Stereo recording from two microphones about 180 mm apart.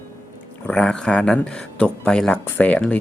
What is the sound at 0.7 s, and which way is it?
Speech, 5° left (ahead or behind).